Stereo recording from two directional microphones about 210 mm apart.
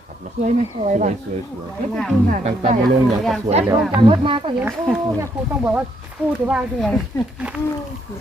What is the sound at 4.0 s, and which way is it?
Speech, 25° right (ahead or behind).